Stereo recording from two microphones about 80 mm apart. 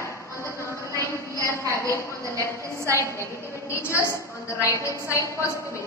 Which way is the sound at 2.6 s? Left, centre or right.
Right.